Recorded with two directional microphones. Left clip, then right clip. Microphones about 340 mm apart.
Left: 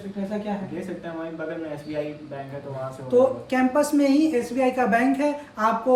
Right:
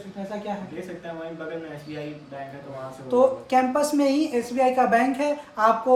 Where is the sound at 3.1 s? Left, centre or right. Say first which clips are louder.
Right 1 dB; centre.